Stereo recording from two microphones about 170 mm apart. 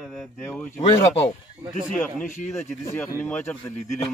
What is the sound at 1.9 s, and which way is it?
Speech, 5° left (ahead or behind).